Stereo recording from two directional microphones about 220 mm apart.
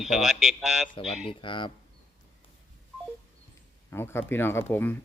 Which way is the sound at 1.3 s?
20° left (ahead or behind).